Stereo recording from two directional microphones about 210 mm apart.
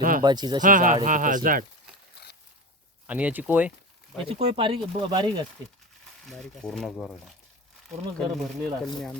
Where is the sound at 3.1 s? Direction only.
5° right (ahead or behind).